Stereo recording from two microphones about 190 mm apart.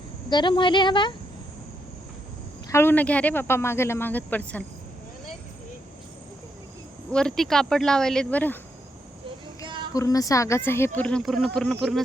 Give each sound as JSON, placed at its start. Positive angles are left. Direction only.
{"t": 0.3, "sound": "speech", "side_deg": 25}
{"t": 2.6, "sound": "speech", "side_deg": 15}
{"t": 7.1, "sound": "speech", "side_deg": 5}
{"t": 9.6, "sound": "a sound", "side_deg": -25}
{"t": 9.9, "sound": "speech", "side_deg": 15}